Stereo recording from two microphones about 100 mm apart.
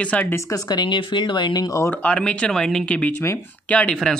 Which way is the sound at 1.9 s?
15° left (ahead or behind).